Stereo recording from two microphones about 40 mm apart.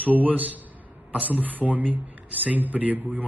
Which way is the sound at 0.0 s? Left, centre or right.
Right.